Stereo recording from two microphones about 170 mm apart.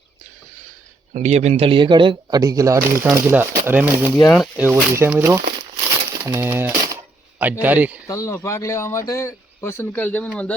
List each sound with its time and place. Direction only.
1.1 s speech: 40° right (ahead or behind); by 4.1 s 10° right (ahead or behind)
4.1 s speech: 5° left (ahead or behind)
4.5 s speech: 15° right (ahead or behind)
6.2 s typewriter: 15° right (ahead or behind)
7.6 s speech: 10° right (ahead or behind)
8.0 s speech: 20° left (ahead or behind)